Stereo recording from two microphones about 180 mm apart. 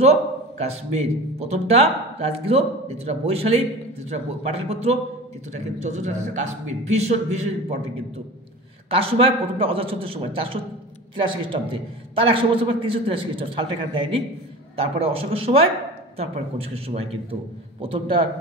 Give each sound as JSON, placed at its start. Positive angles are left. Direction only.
{"t": 0.0, "sound": "a man's voice", "side_deg": -35}
{"t": 8.9, "sound": "a man's voice", "side_deg": -30}